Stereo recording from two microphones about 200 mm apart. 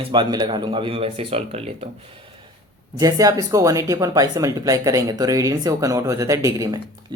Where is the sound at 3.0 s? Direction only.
20° right (ahead or behind).